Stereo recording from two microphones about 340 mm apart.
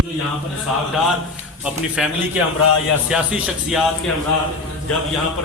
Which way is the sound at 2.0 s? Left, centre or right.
Centre.